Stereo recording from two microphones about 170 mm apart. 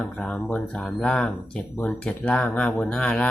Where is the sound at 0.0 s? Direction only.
5° left (ahead or behind).